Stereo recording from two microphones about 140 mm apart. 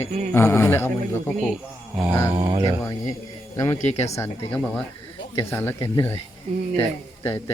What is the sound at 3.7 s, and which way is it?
Speech, 55° left (ahead or behind).